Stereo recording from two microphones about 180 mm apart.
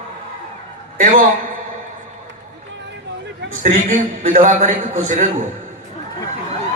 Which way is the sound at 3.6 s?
45° right (ahead or behind).